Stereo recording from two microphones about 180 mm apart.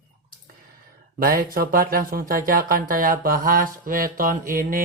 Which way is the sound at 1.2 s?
55° right (ahead or behind).